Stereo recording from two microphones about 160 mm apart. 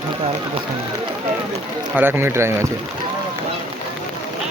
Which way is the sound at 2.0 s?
15° right (ahead or behind).